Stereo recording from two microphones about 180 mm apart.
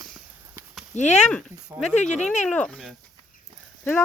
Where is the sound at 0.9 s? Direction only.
40° left (ahead or behind).